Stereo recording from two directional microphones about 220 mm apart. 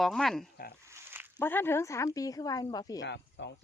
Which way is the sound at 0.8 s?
10° right (ahead or behind).